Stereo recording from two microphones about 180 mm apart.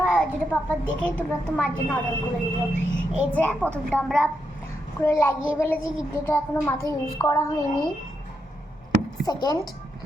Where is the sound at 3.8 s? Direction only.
5° left (ahead or behind).